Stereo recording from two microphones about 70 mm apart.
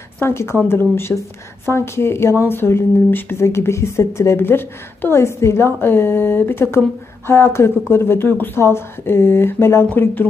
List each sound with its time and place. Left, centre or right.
0.2 s speech: left